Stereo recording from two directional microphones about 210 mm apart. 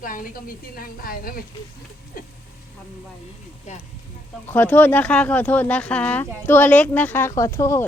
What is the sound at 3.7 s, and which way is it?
Speech, 35° left (ahead or behind).